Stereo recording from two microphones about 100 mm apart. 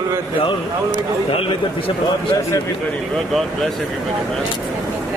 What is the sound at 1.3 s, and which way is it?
A man's voice, 65° left (ahead or behind).